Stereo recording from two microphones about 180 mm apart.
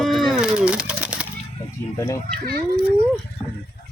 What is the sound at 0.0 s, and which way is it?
Pigeon, centre (ahead or behind).